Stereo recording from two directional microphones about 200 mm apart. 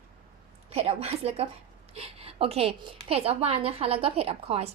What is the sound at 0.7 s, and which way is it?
A woman's voice, 30° right (ahead or behind).